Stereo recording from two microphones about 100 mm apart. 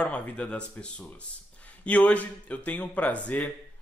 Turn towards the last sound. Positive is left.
turn(degrees=15)  # may be behind; listen again after turning